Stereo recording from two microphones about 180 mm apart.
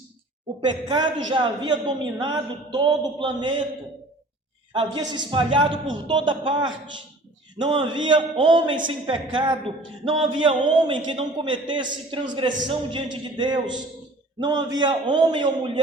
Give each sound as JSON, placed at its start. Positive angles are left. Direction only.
{"t": 0.6, "sound": "a man's voice", "side_deg": -25}
{"t": 4.7, "sound": "a man's voice", "side_deg": -25}